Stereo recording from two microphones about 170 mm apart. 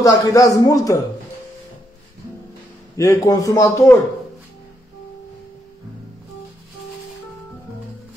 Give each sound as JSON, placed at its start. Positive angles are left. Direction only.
{"t": 0.0, "sound": "a man's voice", "side_deg": 20}
{"t": 3.0, "sound": "a man's voice", "side_deg": 20}